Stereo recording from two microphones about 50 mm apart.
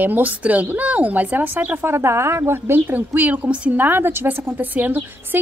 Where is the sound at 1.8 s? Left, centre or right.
Right.